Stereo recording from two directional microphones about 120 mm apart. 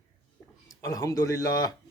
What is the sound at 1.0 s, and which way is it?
Speech, 25° left (ahead or behind).